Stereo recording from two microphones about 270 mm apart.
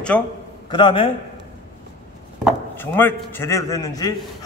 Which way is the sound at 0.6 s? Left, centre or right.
Centre.